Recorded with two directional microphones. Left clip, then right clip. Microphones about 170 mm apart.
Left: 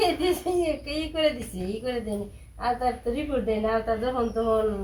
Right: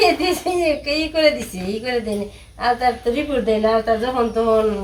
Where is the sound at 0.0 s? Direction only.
10° right (ahead or behind).